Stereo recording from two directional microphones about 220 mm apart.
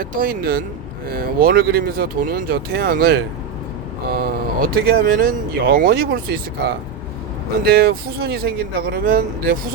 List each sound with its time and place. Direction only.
0.0 s speech: 40° right (ahead or behind)